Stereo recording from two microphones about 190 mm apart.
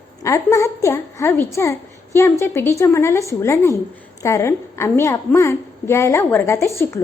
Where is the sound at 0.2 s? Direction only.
15° left (ahead or behind).